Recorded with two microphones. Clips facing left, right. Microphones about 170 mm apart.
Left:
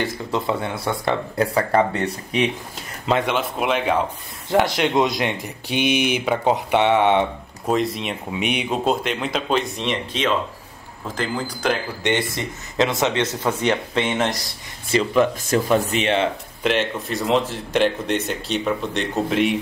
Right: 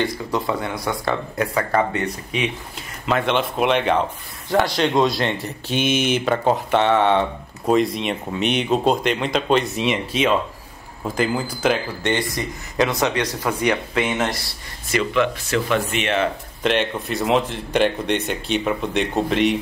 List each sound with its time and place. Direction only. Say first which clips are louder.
0.3 s speech: even; 25° left (ahead or behind)
3.3 s speech: right 2 dB; 5° left (ahead or behind)
4.5 s speech: even; 20° left (ahead or behind)
7.6 s speech: right 3 dB; centre (ahead or behind)
12.0 s speech: even; 20° left (ahead or behind)
14.9 s speech: left 2 dB; 35° left (ahead or behind)
16.6 s speech: right 1 dB; centre (ahead or behind)